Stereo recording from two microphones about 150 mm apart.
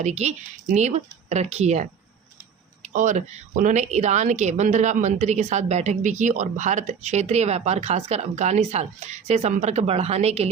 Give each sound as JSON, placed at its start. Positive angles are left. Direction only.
{"t": 0.0, "sound": "a woman's voice", "side_deg": -50}